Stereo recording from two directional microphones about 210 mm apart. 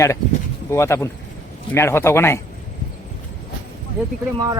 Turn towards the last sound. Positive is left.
turn(degrees=-20)  # may be behind; listen again after turning